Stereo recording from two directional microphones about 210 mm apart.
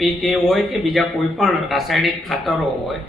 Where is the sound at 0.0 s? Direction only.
Centre (ahead or behind).